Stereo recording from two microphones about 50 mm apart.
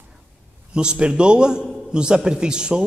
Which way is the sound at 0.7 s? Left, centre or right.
Centre.